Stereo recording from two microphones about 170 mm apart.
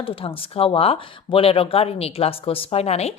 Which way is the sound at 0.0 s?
30° left (ahead or behind).